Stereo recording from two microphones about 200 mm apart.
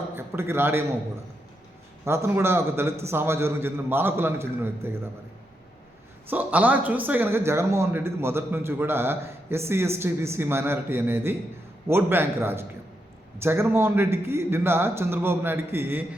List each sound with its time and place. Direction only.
0.2 s a man's voice: 10° right (ahead or behind)
2.0 s a man's voice: 15° right (ahead or behind)
6.3 s a man's voice: 10° right (ahead or behind)